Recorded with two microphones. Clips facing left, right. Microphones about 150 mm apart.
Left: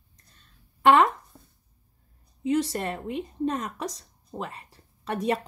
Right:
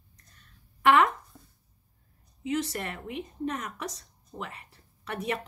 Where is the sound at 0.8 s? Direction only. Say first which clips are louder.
Left 3 dB; 30° left (ahead or behind).